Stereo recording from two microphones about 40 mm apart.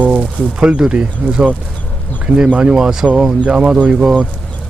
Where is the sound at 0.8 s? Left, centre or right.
Centre.